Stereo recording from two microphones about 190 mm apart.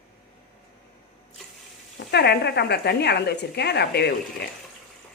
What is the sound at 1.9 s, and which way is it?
A woman's voice, 60° left (ahead or behind).